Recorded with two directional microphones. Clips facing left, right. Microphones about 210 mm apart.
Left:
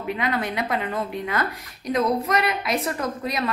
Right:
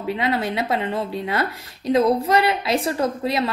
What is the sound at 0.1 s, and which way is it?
Speech, 25° right (ahead or behind).